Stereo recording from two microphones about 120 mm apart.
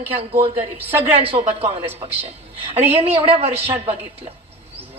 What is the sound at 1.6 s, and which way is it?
Speech, 15° right (ahead or behind).